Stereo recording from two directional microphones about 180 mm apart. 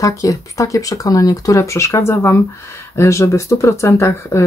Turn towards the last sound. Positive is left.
turn(degrees=15)  # may be behind; listen again after turning